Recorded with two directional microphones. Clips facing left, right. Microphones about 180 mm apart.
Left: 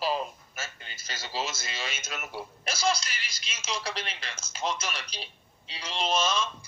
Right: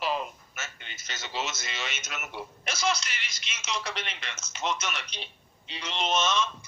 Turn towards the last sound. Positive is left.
turn(degrees=30)  # may be behind; listen again after turning